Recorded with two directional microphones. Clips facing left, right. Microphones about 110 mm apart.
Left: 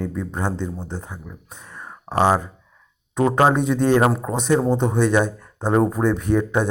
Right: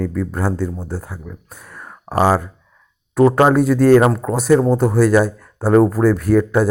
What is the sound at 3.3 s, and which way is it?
Speech, 5° right (ahead or behind).